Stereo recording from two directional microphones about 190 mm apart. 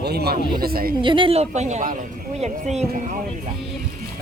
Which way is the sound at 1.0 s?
25° right (ahead or behind).